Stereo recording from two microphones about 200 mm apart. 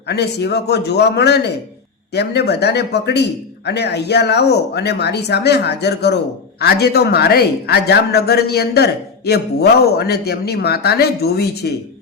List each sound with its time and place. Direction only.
0.1 s a man's voice: 55° left (ahead or behind)